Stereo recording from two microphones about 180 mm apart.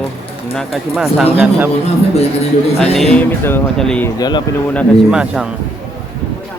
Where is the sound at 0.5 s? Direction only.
Centre (ahead or behind).